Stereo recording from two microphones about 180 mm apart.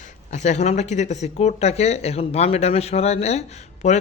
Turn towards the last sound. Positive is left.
turn(degrees=40)  # may be behind; listen again after turning